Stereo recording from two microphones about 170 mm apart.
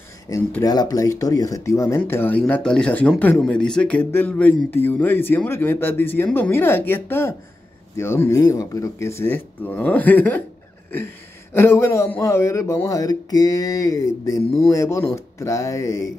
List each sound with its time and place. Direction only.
0.6 s speech: 20° left (ahead or behind)
11.5 s speech: 15° left (ahead or behind)